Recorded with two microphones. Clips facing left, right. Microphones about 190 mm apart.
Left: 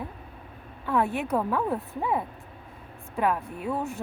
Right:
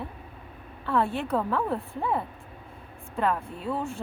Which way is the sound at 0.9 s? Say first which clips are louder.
Even; 10° left (ahead or behind).